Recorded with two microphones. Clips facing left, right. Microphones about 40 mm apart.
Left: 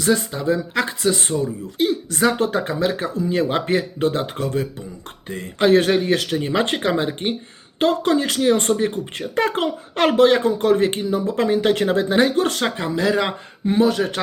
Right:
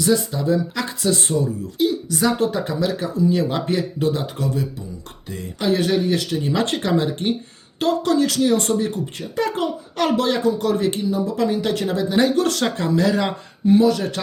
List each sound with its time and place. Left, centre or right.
0.0 s speech: left
6.3 s speech: left
13.7 s speech: left